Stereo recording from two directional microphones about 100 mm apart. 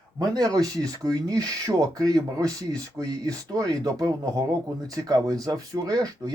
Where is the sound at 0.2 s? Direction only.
40° right (ahead or behind).